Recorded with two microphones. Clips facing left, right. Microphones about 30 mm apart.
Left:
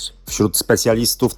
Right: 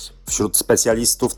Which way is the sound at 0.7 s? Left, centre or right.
Left.